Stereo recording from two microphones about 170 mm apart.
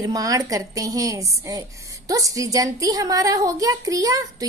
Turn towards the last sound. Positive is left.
turn(degrees=-20)  # may be behind; listen again after turning